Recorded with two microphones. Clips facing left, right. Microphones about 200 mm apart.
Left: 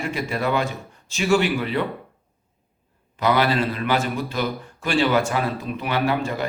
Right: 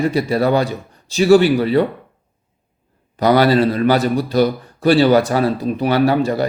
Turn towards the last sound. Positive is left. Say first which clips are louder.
# right 8 dB
turn(degrees=-35)  # may be behind; listen again after turning